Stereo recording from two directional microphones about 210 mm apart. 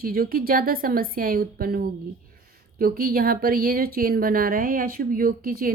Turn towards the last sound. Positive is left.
turn(degrees=-45)  # may be behind; listen again after turning